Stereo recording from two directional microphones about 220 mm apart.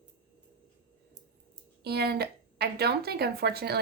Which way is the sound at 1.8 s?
45° right (ahead or behind).